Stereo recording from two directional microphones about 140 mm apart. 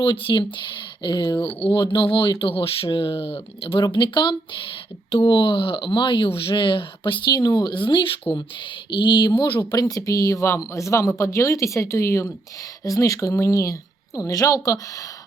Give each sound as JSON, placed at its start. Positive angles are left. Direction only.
{"t": 0.0, "sound": "speech", "side_deg": 35}